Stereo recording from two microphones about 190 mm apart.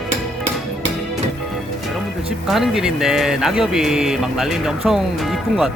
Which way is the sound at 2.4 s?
Centre (ahead or behind).